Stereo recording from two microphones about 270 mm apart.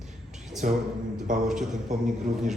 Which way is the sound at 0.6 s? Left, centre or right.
Right.